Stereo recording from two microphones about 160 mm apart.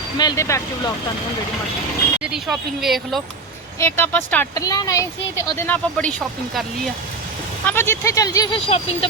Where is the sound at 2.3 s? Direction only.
Centre (ahead or behind).